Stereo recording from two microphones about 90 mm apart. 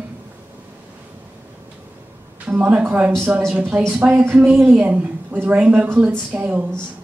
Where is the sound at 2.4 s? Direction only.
15° right (ahead or behind).